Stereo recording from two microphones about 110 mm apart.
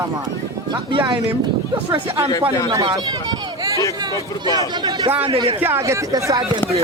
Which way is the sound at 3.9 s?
35° right (ahead or behind).